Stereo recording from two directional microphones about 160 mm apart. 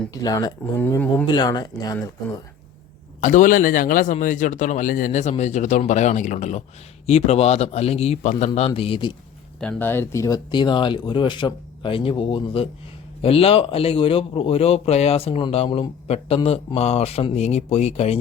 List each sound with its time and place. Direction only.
0.1 s speech: 20° left (ahead or behind)
1.3 s speech: 25° left (ahead or behind)
3.2 s a man's voice: 50° left (ahead or behind); by 9.1 s 30° left (ahead or behind)
9.6 s a man's voice: 10° left (ahead or behind); by 18.2 s 40° left (ahead or behind)